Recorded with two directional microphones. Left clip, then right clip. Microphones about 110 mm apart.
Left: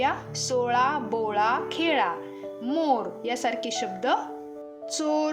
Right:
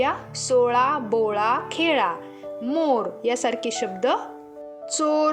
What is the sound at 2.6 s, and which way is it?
A woman's voice, 35° right (ahead or behind).